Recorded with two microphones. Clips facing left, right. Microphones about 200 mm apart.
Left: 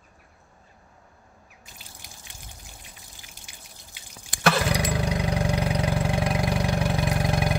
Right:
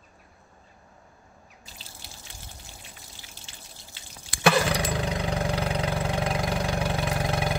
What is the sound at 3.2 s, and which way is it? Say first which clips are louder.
Drip: right 1 dB; 15° left (ahead or behind).